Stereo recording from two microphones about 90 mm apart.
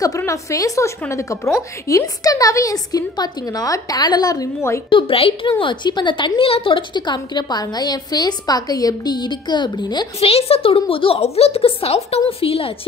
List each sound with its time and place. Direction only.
0.3 s a woman's voice: 40° left (ahead or behind)
4.6 s a woman's voice: 30° left (ahead or behind)
4.8 s a woman's voice: 80° left
5.6 s a woman's voice: 60° left (ahead or behind)
10.2 s a woman's voice: 90° left